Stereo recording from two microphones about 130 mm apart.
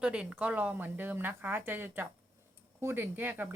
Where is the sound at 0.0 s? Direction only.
5° right (ahead or behind).